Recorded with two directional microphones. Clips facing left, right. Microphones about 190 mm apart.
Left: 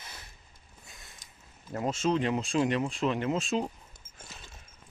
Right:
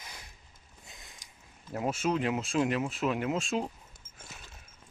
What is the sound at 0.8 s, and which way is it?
Mechanisms, 15° right (ahead or behind).